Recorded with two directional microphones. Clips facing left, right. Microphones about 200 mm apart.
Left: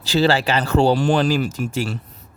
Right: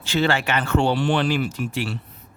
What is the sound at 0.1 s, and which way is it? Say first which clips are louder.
Speech: left 4 dB; 35° left (ahead or behind).